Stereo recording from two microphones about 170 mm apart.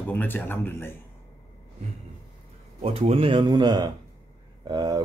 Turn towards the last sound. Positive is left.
turn(degrees=-20)  # may be behind; listen again after turning